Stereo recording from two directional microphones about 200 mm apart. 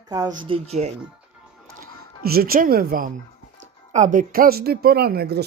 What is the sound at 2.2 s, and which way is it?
Speech, 50° right (ahead or behind).